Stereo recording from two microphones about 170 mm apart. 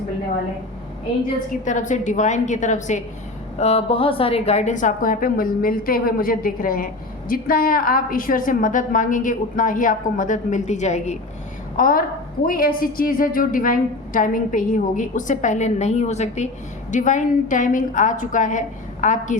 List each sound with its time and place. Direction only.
1.6 s a woman's voice: 45° left (ahead or behind)
11.8 s a woman's voice: 55° left (ahead or behind)